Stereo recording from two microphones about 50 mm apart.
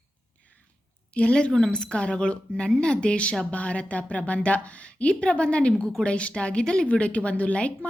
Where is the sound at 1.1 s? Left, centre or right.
Left.